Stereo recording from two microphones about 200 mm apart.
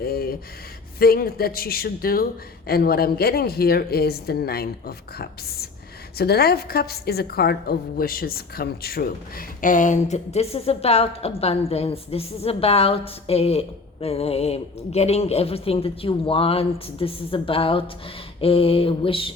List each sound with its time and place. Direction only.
0.0 s a woman's voice: 50° left (ahead or behind); by 19.3 s 25° left (ahead or behind)